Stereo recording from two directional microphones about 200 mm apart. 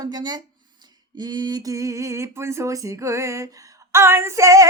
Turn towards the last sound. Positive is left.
turn(degrees=-15)  # may be behind; listen again after turning